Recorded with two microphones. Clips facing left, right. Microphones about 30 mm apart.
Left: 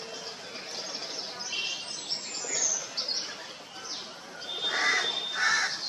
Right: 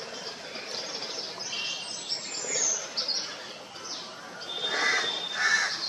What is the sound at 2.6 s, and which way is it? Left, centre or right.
Bird, right.